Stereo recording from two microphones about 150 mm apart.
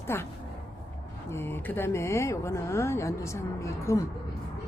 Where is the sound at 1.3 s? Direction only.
15° left (ahead or behind).